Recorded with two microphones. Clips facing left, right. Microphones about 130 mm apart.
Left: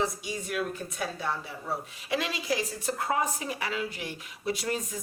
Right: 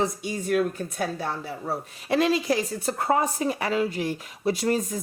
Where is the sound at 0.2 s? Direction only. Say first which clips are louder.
Right 8 dB; 45° right (ahead or behind).